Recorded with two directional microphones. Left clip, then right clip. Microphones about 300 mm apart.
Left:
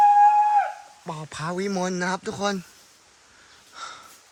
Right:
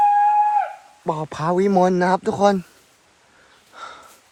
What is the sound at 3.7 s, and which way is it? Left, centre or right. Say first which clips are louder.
Snort: right 1 dB; centre.